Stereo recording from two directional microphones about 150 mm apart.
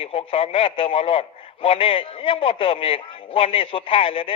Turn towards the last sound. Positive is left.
turn(degrees=35)  # may be behind; listen again after turning